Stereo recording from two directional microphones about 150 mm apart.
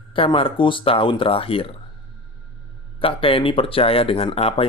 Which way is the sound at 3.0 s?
35° left (ahead or behind).